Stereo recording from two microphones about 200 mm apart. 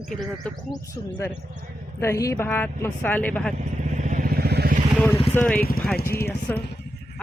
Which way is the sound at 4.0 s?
40° right (ahead or behind).